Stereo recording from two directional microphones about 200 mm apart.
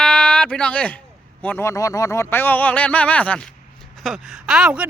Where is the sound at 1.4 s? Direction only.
10° left (ahead or behind).